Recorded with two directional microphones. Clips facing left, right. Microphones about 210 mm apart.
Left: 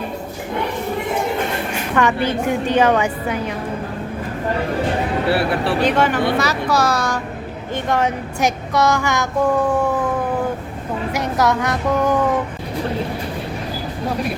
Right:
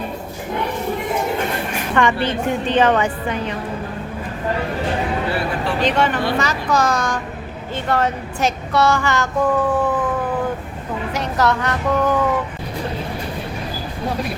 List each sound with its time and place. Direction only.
2.0 s child singing: 10° left (ahead or behind)
5.3 s speech: 75° left (ahead or behind)
5.8 s child singing: 10° left (ahead or behind)
11.1 s a woman's voice: 10° left (ahead or behind)